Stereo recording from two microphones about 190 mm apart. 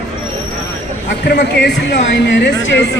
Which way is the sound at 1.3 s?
60° left (ahead or behind).